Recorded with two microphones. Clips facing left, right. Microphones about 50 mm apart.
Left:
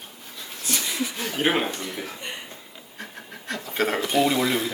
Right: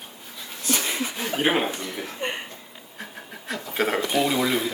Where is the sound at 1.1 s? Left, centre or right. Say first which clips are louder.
Right 1 dB; centre.